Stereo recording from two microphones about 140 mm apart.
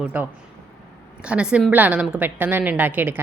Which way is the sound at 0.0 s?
10° right (ahead or behind).